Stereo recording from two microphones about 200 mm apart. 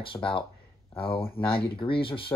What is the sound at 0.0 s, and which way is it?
Speech, 25° left (ahead or behind).